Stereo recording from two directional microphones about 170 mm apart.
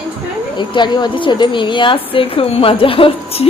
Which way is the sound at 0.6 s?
25° left (ahead or behind).